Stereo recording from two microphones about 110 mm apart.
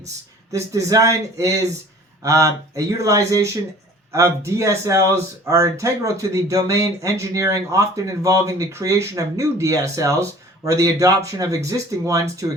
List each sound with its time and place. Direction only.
0.5 s speech: 30° right (ahead or behind)